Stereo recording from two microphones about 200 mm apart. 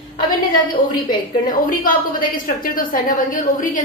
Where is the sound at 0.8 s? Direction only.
20° left (ahead or behind).